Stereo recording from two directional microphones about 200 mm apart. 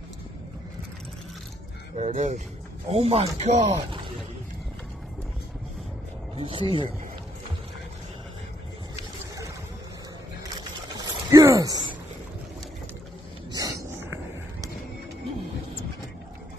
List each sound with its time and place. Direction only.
2.0 s speech: 35° right (ahead or behind)
6.3 s speech: 25° right (ahead or behind)
10.9 s a sound: 20° right (ahead or behind)
13.5 s dog: 20° right (ahead or behind)